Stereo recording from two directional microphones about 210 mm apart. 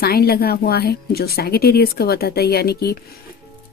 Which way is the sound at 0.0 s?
50° left (ahead or behind).